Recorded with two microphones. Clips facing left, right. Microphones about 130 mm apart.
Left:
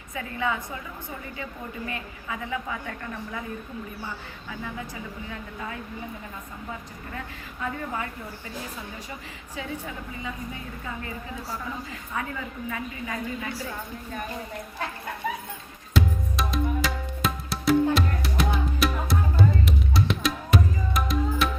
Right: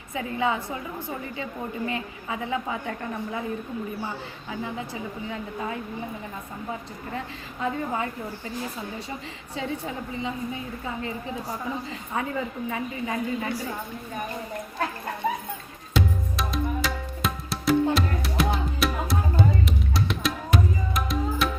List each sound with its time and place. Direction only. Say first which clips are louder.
0.1 s a woman's voice: right 3 dB; 20° right (ahead or behind)
1.9 s a woman's voice: right 3 dB; 20° right (ahead or behind)
7.6 s a woman's voice: right 4 dB; 25° right (ahead or behind)
9.6 s a woman's voice: right 4 dB; 25° right (ahead or behind)
12.1 s a woman's voice: right 4 dB; 30° right (ahead or behind)
15.9 s music: even; centre (ahead or behind)